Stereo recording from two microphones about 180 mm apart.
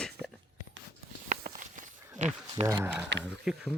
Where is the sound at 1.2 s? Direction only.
45° right (ahead or behind).